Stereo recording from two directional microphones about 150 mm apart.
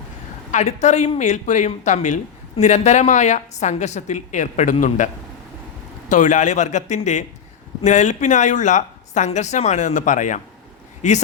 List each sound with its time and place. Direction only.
0.5 s speech: 50° left (ahead or behind)